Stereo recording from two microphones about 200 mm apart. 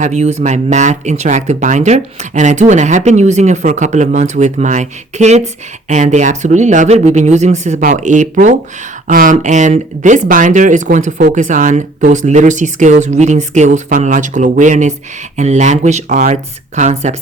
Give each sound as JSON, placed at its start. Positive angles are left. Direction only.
{"t": 0.0, "sound": "speech", "side_deg": -35}